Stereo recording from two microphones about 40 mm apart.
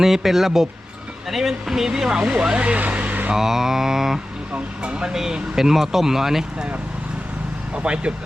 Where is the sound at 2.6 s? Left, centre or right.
Right.